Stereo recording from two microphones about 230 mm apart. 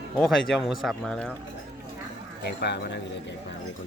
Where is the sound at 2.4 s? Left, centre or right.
Left.